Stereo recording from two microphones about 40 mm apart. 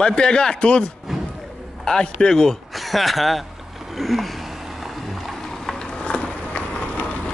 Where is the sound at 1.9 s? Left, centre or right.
Left.